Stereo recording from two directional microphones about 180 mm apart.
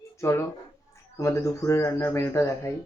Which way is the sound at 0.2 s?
15° left (ahead or behind).